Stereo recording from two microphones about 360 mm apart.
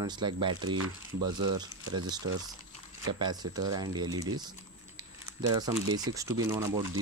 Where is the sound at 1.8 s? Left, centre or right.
Right.